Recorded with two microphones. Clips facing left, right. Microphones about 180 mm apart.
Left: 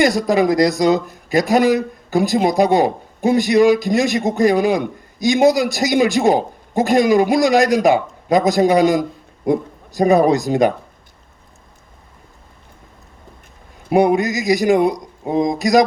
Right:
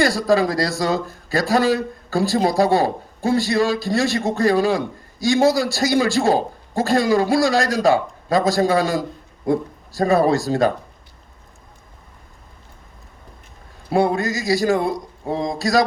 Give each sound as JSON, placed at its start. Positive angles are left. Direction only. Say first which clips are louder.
{"t": 0.0, "sound": "a man's voice", "louder": "left 2 dB", "side_deg": 20}
{"t": 13.9, "sound": "speech", "louder": "left 4 dB", "side_deg": 20}